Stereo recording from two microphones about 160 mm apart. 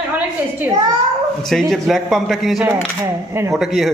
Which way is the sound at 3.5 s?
Centre (ahead or behind).